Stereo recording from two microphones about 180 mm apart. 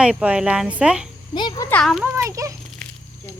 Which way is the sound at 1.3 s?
25° left (ahead or behind).